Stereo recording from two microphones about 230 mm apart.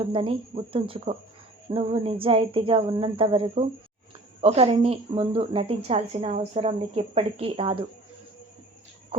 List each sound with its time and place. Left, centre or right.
0.1 s speech: right